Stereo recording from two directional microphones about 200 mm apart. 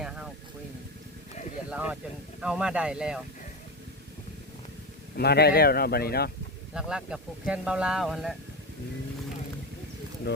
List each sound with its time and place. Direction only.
1.7 s speech: 5° right (ahead or behind)
5.1 s speech: 55° left (ahead or behind)
6.7 s speech: 5° right (ahead or behind)
10.3 s speech: 55° left (ahead or behind)